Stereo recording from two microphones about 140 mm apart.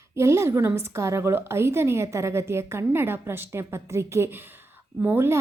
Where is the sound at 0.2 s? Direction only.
20° right (ahead or behind).